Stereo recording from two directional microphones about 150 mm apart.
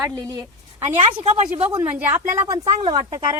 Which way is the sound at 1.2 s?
50° right (ahead or behind).